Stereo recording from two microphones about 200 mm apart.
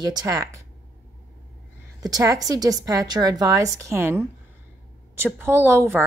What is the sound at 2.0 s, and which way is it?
A woman's voice, 15° right (ahead or behind).